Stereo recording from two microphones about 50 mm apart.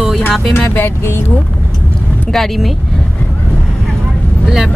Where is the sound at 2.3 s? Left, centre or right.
Centre.